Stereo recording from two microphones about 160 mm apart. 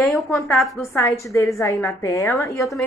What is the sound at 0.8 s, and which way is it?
A woman's voice, 20° left (ahead or behind).